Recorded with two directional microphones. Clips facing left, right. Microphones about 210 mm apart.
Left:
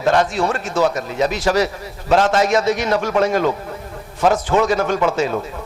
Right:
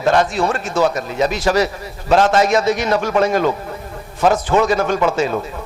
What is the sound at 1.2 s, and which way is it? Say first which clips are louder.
A man's voice: right 1 dB; 15° right (ahead or behind).